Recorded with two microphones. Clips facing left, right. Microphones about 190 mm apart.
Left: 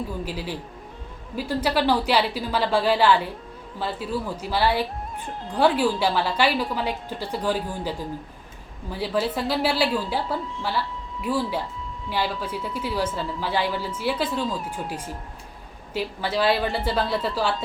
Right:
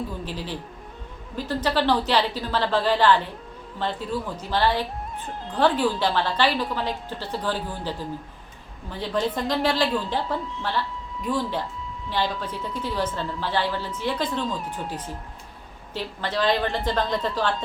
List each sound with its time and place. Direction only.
0.3 s speech: 10° left (ahead or behind)